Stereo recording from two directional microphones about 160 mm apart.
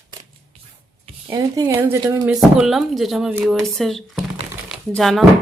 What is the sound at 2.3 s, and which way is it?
Speech, 5° right (ahead or behind).